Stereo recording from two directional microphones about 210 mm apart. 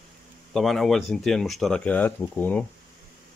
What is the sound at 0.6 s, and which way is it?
Speech, centre (ahead or behind).